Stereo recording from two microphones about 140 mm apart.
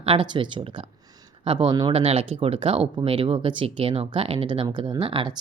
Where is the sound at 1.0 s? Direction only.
30° right (ahead or behind).